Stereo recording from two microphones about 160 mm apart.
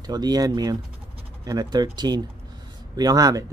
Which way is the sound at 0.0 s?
25° right (ahead or behind).